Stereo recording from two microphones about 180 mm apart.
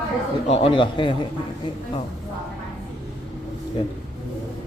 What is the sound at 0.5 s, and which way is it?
Speech, 30° left (ahead or behind).